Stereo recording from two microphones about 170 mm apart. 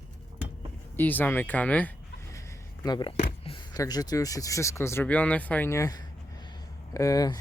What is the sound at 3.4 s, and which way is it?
Speech, 30° left (ahead or behind).